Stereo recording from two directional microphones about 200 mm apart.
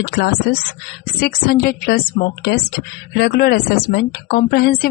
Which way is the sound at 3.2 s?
50° left (ahead or behind).